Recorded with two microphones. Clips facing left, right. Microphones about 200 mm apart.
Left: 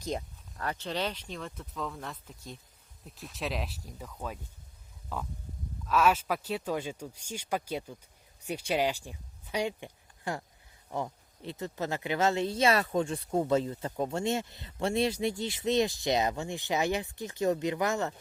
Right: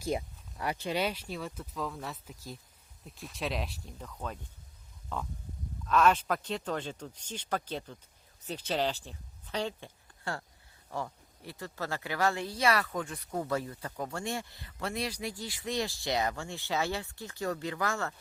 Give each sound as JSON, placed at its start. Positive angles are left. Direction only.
{"t": 0.0, "sound": "speech", "side_deg": -10}